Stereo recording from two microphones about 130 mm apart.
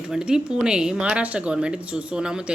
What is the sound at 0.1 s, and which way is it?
A woman's voice, 5° right (ahead or behind).